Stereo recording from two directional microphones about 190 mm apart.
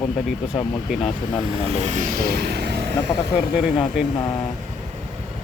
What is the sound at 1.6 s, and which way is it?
Music, 35° right (ahead or behind).